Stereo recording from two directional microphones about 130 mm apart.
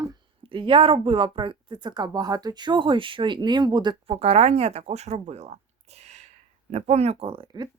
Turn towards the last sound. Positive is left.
turn(degrees=-35)  # may be behind; listen again after turning